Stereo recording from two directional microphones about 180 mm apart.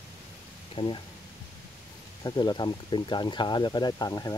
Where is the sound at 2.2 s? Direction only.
25° left (ahead or behind).